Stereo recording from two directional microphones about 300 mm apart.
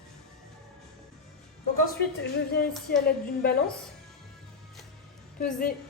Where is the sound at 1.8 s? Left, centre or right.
Left.